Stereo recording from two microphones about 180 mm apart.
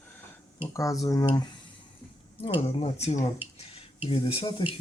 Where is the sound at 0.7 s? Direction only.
20° left (ahead or behind).